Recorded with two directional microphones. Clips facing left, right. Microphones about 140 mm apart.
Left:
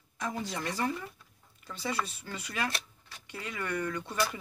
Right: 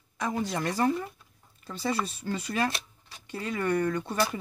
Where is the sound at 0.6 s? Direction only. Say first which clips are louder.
Right 6 dB; 50° right (ahead or behind).